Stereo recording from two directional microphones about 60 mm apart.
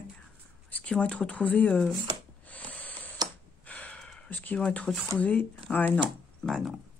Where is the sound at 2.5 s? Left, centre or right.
Left.